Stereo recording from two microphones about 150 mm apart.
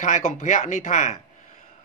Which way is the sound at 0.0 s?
50° left (ahead or behind).